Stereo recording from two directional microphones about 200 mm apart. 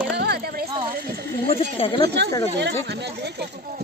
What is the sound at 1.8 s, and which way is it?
Speech, 25° left (ahead or behind).